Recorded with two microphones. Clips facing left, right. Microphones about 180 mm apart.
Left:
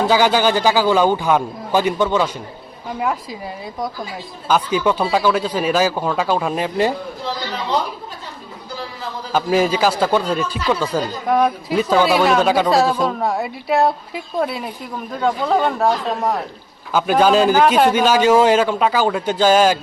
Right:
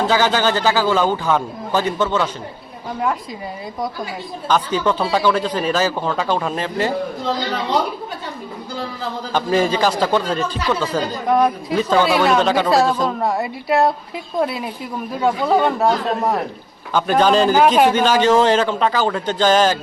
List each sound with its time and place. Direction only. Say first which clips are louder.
0.1 s speech: left 2 dB; 10° left (ahead or behind)
4.4 s speech: left 1 dB; 10° left (ahead or behind)
9.3 s a man's voice: left 1 dB; 10° left (ahead or behind)